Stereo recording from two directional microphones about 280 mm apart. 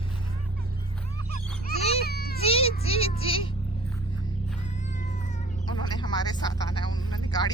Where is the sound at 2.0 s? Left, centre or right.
Left.